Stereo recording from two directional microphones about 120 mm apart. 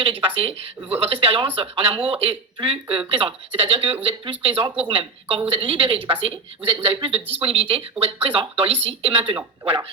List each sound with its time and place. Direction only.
0.0 s speech: 45° right (ahead or behind)